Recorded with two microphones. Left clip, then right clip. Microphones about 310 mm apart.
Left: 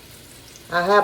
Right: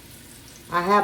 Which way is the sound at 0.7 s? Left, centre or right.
Centre.